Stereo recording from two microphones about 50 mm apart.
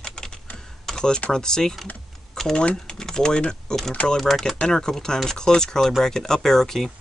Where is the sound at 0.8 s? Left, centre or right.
Centre.